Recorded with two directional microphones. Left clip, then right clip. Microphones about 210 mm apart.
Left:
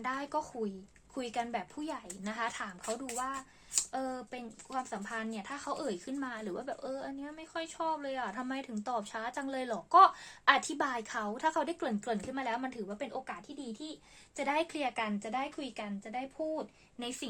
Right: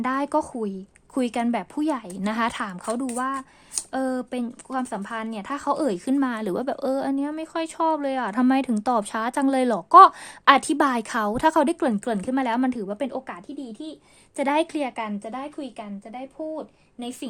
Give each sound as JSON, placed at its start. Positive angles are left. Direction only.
{"t": 0.0, "sound": "speech", "side_deg": -45}
{"t": 14.3, "sound": "a woman's voice", "side_deg": -45}